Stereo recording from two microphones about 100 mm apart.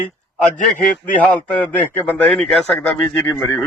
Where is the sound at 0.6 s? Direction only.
15° left (ahead or behind).